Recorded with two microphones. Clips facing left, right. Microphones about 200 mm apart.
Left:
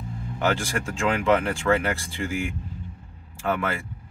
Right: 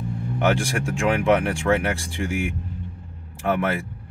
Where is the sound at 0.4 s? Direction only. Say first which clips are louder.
Right 3 dB; 15° right (ahead or behind).